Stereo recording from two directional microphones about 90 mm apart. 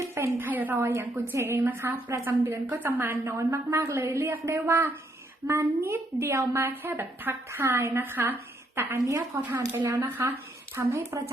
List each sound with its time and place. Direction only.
0.0 s a sound: 30° right (ahead or behind)
0.9 s a woman's voice: 25° right (ahead or behind)
9.0 s a woman's voice: 35° right (ahead or behind)